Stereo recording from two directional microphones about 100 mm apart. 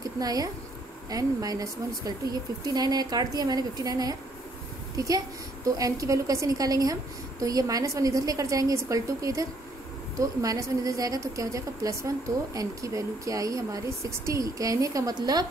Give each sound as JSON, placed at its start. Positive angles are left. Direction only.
{"t": 0.2, "sound": "a woman's voice", "side_deg": -40}